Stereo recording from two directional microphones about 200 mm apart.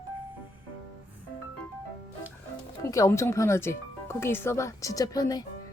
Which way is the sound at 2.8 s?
15° left (ahead or behind).